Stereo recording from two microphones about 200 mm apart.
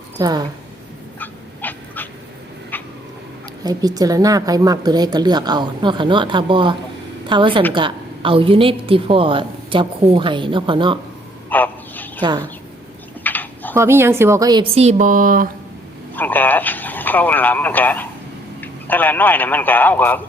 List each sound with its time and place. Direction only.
0.2 s a woman's voice: 20° right (ahead or behind)
1.2 s dog: 10° left (ahead or behind)
2.7 s cat: 10° left (ahead or behind)
3.6 s a woman's voice: 20° right (ahead or behind)
11.4 s a sound: 10° left (ahead or behind)
13.2 s a sound: 10° left (ahead or behind)
13.7 s a woman's voice: 10° right (ahead or behind); by 15.4 s 45° right (ahead or behind)
16.1 s speech: 10° left (ahead or behind)